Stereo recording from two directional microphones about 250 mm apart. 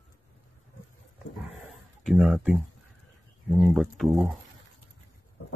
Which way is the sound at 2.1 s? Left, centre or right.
Centre.